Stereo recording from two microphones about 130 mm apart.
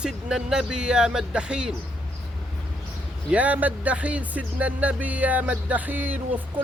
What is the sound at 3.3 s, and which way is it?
Speech, 10° right (ahead or behind).